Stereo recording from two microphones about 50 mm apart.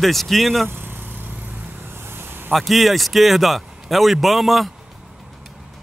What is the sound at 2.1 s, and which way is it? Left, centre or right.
Vehicle, right.